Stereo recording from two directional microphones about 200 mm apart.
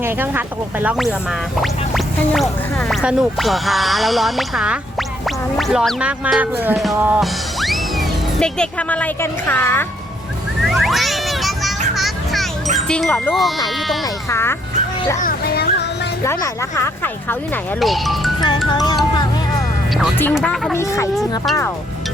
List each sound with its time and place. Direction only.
0.0 s speech: 10° right (ahead or behind)
2.9 s speech: 5° right (ahead or behind)
10.6 s music: centre (ahead or behind)
11.9 s children playing: centre (ahead or behind)
12.9 s speech: 5° left (ahead or behind)
14.3 s speech: 10° left (ahead or behind)
15.2 s music: 50° left (ahead or behind)
16.2 s speech: 15° left (ahead or behind)
17.7 s speech: centre (ahead or behind)
18.7 s speech: 20° left (ahead or behind)
20.3 s speech: centre (ahead or behind)
20.7 s speech: 15° left (ahead or behind)
21.2 s speech: centre (ahead or behind)